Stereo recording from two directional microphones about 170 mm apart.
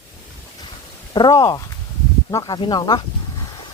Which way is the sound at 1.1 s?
25° left (ahead or behind).